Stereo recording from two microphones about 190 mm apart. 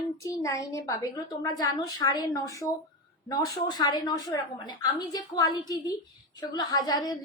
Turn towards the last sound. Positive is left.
turn(degrees=20)  # may be behind; listen again after turning